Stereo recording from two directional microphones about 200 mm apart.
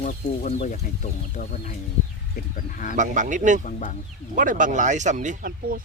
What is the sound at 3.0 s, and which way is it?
Speech, 40° right (ahead or behind).